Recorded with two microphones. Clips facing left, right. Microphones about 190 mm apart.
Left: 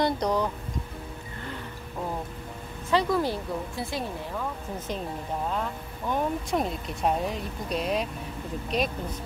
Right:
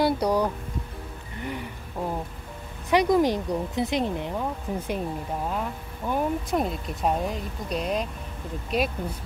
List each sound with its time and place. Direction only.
0.0 s music: 10° right (ahead or behind)
2.9 s speech: 15° right (ahead or behind)